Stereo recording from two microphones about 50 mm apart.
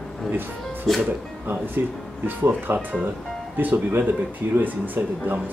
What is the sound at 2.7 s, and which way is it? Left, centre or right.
Speech, right.